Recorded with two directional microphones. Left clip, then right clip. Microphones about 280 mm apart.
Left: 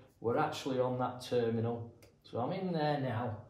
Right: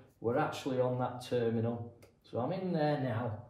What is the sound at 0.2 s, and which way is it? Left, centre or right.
A man's voice, centre.